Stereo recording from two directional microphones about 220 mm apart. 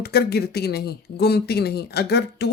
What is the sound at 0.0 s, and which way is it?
Speech, 45° left (ahead or behind).